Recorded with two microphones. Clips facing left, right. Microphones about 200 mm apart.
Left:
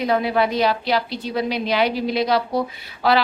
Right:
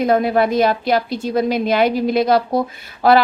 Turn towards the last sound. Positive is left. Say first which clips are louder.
# right 6 dB
turn(degrees=-45)  # may be behind; listen again after turning